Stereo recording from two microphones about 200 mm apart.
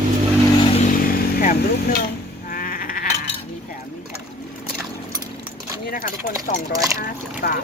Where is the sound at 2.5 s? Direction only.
45° left (ahead or behind).